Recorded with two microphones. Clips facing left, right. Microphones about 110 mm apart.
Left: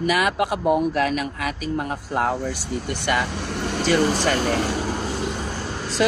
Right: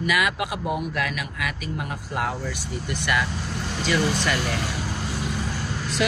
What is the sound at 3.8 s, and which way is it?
Speech, 40° left (ahead or behind).